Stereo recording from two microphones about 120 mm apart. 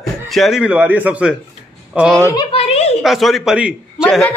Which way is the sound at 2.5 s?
55° left (ahead or behind).